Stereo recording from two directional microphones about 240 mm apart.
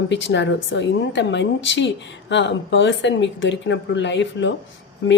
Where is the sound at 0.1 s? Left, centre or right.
Left.